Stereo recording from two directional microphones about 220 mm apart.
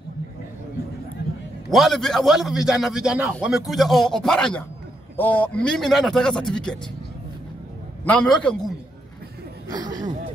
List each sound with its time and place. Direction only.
1.7 s a man's voice: centre (ahead or behind)
8.0 s a man's voice: 5° left (ahead or behind)
9.7 s a sound: 20° right (ahead or behind)